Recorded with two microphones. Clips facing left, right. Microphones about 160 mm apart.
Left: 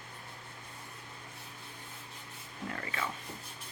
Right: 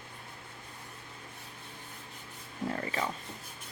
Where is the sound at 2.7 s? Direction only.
30° right (ahead or behind).